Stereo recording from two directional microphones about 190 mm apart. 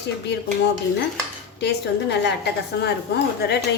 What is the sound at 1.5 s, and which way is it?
A woman's voice, 65° left (ahead or behind).